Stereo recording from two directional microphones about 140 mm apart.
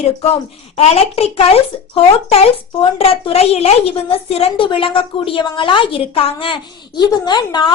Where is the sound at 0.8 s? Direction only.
50° left (ahead or behind).